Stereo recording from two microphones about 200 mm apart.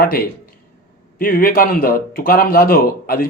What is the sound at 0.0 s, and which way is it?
Speech, 45° left (ahead or behind).